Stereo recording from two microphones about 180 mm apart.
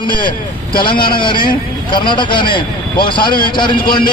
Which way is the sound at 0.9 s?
55° left (ahead or behind).